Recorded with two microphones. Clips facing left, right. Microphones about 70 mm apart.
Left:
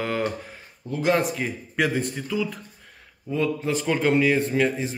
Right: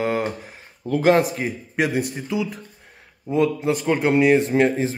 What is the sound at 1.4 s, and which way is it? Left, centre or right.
Speech, centre.